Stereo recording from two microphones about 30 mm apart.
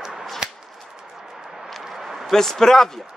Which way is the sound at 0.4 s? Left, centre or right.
Right.